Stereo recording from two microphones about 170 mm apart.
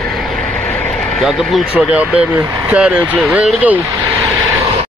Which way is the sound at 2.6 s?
5° right (ahead or behind).